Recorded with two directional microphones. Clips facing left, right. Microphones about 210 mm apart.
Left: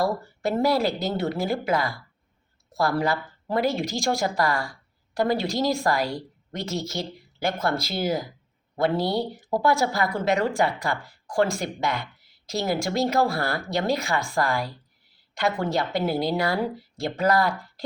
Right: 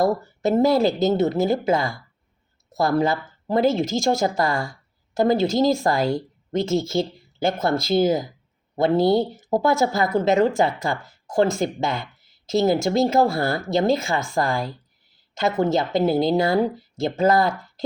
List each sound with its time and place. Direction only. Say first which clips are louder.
0.6 s speech: right 5 dB; 25° right (ahead or behind)